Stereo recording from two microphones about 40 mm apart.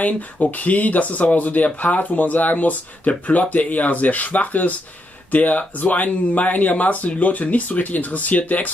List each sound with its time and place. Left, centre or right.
0.0 s speech: left